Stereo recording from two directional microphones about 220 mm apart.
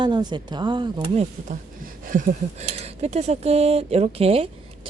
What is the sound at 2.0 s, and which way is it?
A woman's voice, 35° right (ahead or behind).